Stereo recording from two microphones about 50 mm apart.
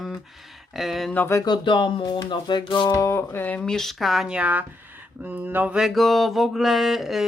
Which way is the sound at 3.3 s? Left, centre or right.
Left.